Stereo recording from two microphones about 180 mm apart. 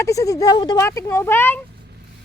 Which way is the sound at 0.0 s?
20° left (ahead or behind).